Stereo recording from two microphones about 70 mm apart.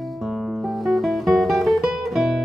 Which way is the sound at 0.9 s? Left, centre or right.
Centre.